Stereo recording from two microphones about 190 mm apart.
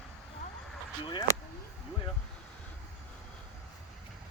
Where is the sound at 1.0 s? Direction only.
25° left (ahead or behind).